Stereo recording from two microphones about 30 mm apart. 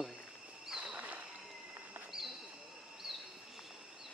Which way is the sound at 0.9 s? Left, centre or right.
Right.